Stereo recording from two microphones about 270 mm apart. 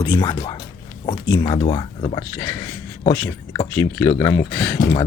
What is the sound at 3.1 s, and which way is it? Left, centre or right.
Speech, centre.